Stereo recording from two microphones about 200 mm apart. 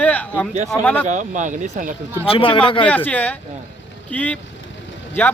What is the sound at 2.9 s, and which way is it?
Speech, 10° left (ahead or behind).